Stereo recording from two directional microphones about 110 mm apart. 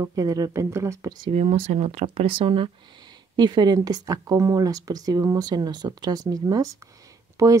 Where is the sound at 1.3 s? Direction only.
70° right (ahead or behind); by 2.7 s 55° right (ahead or behind).